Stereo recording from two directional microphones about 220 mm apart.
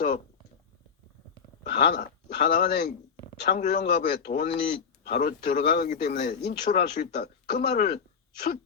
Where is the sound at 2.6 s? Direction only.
50° left (ahead or behind).